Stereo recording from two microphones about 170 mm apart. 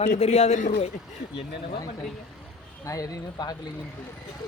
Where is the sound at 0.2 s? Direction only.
40° left (ahead or behind).